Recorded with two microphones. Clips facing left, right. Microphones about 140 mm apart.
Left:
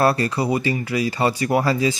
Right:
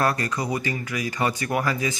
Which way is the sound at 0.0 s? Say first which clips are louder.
Left 5 dB; 30° left (ahead or behind).